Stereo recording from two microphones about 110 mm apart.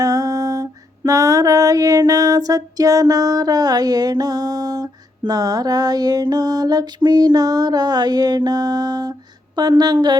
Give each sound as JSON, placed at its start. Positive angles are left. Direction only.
{"t": 0.0, "sound": "music", "side_deg": -30}
{"t": 9.6, "sound": "a woman's voice", "side_deg": -40}